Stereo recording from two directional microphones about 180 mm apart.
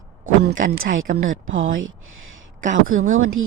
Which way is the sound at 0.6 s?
45° right (ahead or behind).